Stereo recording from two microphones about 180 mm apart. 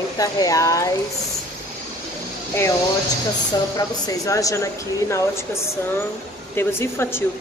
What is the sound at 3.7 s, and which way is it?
Speech, 20° left (ahead or behind).